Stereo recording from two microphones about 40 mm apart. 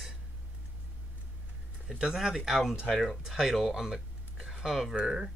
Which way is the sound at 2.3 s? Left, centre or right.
Centre.